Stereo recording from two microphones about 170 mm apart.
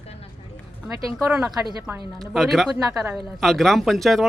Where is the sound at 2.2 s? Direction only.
Centre (ahead or behind).